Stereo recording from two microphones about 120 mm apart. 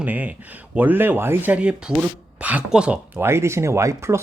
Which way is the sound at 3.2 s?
20° right (ahead or behind).